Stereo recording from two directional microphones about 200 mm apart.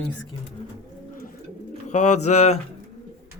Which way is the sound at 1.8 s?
35° left (ahead or behind).